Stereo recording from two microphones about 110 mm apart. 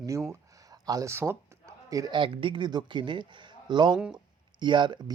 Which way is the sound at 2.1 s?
50° right (ahead or behind).